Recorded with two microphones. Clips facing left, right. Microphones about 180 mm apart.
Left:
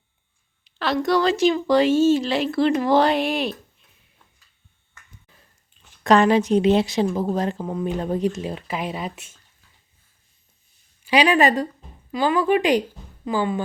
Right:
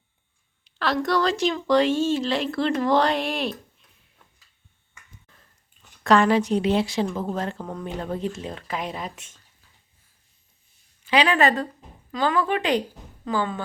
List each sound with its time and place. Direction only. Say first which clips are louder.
0.6 s speech: left 2 dB; centre (ahead or behind)
6.0 s a woman's voice: left 2 dB; 20° left (ahead or behind)
11.0 s a woman's voice: left 3 dB; 15° left (ahead or behind)